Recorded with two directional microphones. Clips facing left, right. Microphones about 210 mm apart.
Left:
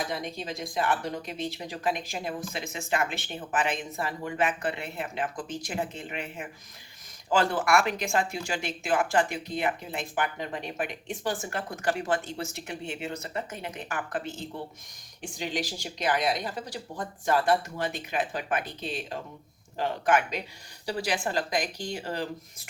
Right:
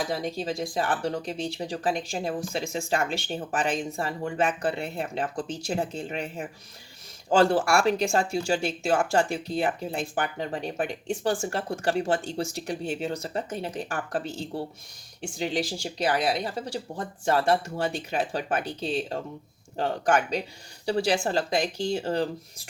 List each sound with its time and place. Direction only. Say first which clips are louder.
0.1 s speech: right 5 dB; 35° right (ahead or behind)